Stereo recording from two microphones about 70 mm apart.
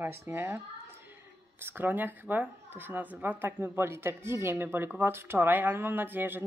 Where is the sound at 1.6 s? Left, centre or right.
Right.